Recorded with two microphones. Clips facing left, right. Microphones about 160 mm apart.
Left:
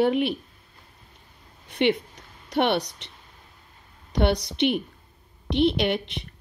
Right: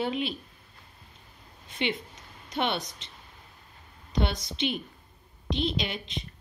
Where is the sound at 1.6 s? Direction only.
65° left (ahead or behind).